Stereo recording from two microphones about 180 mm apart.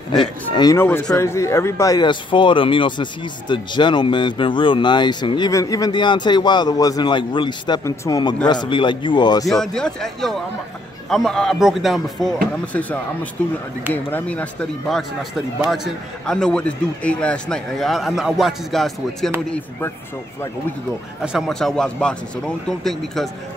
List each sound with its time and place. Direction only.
0.1 s speech: 25° left (ahead or behind)
9.5 s a man's voice: 5° left (ahead or behind)
21.2 s a man's voice: 5° right (ahead or behind)